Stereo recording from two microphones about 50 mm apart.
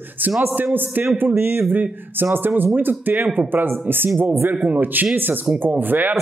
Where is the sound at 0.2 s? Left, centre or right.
Right.